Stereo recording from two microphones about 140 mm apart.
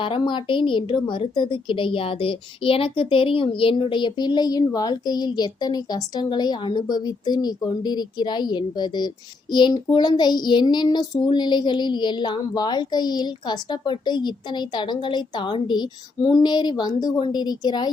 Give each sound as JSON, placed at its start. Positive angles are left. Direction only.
{"t": 0.0, "sound": "speech", "side_deg": 35}